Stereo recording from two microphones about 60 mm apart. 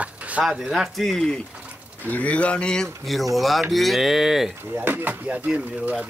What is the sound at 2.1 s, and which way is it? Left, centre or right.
Speech, left.